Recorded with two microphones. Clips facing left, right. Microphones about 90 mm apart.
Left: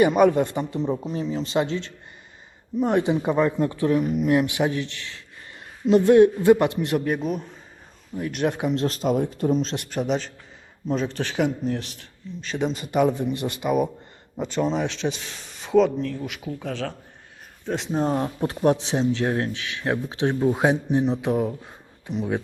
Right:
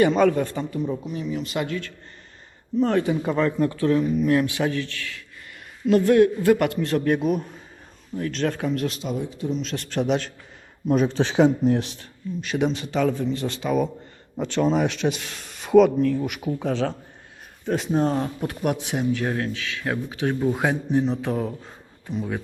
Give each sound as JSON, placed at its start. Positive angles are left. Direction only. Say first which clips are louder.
{"t": 0.0, "sound": "speech", "louder": "left 1 dB", "side_deg": 15}
{"t": 7.2, "sound": "speech", "louder": "right 4 dB", "side_deg": -5}
{"t": 8.1, "sound": "speech", "louder": "even", "side_deg": 10}
{"t": 8.9, "sound": "speech", "louder": "left 6 dB", "side_deg": 45}
{"t": 9.7, "sound": "speech", "louder": "right 1 dB", "side_deg": 15}
{"t": 10.0, "sound": "speech", "louder": "right 2 dB", "side_deg": 0}
{"t": 10.8, "sound": "speech", "louder": "right 5 dB", "side_deg": -15}
{"t": 11.2, "sound": "speech", "louder": "right 8 dB", "side_deg": -30}
{"t": 12.4, "sound": "speech", "louder": "right 2 dB", "side_deg": -5}
{"t": 13.0, "sound": "speech", "louder": "left 2 dB", "side_deg": 15}
{"t": 17.7, "sound": "speech", "louder": "right 2 dB", "side_deg": 0}
{"t": 18.3, "sound": "speech", "louder": "left 4 dB", "side_deg": 30}